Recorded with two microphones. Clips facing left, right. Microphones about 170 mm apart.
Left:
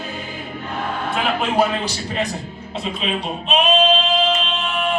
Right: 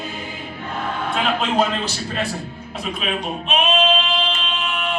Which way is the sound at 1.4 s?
10° left (ahead or behind).